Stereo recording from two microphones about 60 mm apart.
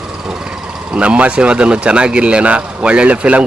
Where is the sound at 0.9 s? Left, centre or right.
Centre.